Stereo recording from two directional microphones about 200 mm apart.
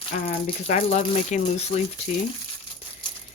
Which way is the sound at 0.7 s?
35° left (ahead or behind).